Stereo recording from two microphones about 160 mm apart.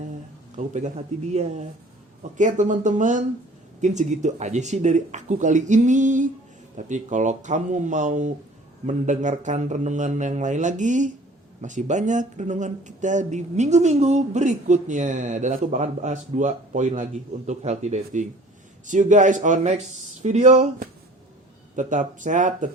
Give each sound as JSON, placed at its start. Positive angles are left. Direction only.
{"t": 0.5, "sound": "speech", "side_deg": -50}